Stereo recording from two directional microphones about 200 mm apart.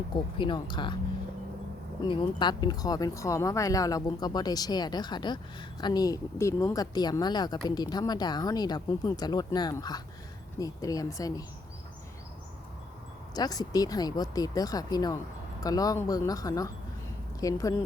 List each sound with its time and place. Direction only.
0.3 s speech: 25° left (ahead or behind)
2.0 s speech: 20° left (ahead or behind)
13.3 s speech: 20° left (ahead or behind)